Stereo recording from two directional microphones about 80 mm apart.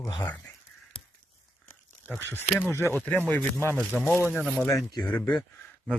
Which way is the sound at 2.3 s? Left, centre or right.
Left.